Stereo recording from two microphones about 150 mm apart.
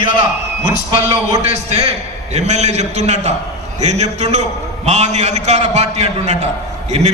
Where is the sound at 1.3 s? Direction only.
45° right (ahead or behind).